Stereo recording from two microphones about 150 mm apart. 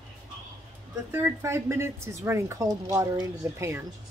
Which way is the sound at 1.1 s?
15° right (ahead or behind).